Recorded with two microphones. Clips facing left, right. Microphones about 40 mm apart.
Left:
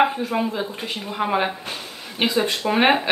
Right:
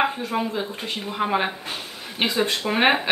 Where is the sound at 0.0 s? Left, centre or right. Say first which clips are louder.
Left 3 dB; centre.